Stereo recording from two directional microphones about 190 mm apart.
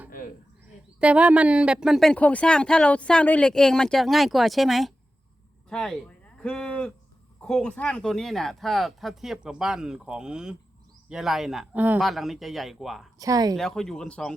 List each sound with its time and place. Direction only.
0.1 s insect: 45° left (ahead or behind)
0.9 s speech: 5° right (ahead or behind)
13.1 s speech: 20° right (ahead or behind)
13.6 s speech: 5° left (ahead or behind)